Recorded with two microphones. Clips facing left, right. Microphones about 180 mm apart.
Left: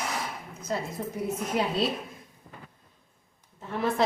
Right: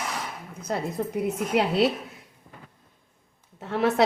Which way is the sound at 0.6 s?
65° right (ahead or behind).